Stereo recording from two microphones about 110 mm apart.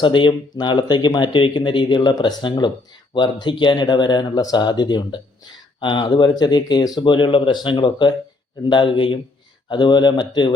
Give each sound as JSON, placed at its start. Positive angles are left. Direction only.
{"t": 0.0, "sound": "speech", "side_deg": 45}